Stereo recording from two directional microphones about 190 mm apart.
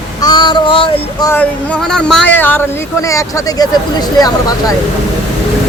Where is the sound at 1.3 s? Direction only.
5° left (ahead or behind).